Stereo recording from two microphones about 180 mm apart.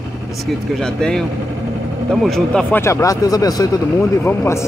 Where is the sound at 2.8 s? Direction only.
15° left (ahead or behind).